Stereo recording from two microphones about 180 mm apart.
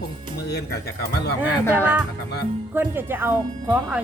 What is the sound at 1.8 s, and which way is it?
A woman's voice, 10° right (ahead or behind).